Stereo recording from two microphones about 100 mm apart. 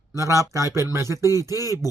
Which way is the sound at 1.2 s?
35° left (ahead or behind).